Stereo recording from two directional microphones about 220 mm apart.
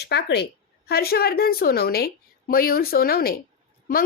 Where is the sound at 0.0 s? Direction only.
50° left (ahead or behind).